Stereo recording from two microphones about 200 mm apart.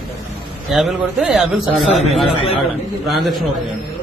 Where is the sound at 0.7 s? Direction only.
Centre (ahead or behind).